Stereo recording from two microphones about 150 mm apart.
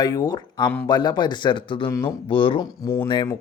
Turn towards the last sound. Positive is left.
turn(degrees=20)  # may be behind; listen again after turning